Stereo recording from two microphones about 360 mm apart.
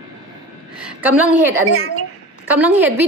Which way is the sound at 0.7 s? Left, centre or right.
Centre.